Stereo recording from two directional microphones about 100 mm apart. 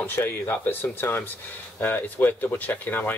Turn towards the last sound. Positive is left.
turn(degrees=15)  # may be behind; listen again after turning